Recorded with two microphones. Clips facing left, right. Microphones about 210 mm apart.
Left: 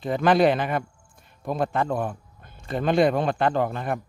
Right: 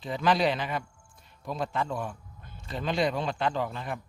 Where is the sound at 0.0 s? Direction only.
50° left (ahead or behind).